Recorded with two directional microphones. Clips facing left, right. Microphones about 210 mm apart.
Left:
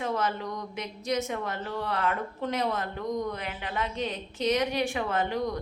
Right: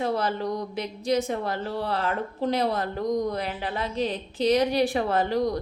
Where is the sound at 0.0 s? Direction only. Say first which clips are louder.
Right 4 dB; 35° right (ahead or behind).